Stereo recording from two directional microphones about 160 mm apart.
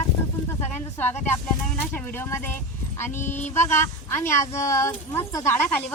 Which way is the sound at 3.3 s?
50° left (ahead or behind).